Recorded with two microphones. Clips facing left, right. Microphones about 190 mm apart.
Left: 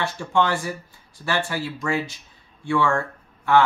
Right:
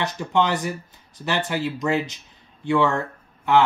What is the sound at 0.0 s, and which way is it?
Speech, 20° right (ahead or behind).